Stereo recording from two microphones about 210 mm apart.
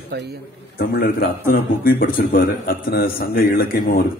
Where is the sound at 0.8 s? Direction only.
45° left (ahead or behind).